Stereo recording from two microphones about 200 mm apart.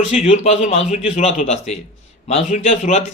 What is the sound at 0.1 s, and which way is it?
A man's voice, 35° left (ahead or behind).